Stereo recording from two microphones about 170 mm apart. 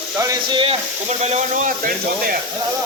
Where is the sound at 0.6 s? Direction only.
35° right (ahead or behind); by 2.4 s 55° right (ahead or behind).